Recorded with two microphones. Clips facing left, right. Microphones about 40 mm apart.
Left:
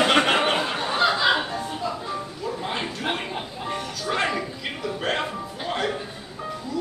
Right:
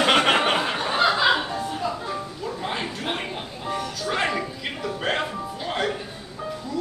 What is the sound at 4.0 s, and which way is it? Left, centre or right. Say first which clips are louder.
Music: left 1 dB; centre.